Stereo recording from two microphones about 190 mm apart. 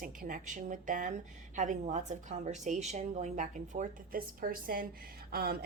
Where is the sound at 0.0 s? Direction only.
45° right (ahead or behind).